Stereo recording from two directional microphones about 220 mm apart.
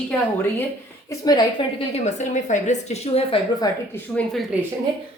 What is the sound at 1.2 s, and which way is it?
Speech, 20° left (ahead or behind).